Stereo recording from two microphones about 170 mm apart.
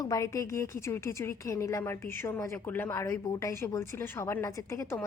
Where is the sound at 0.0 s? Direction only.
20° left (ahead or behind).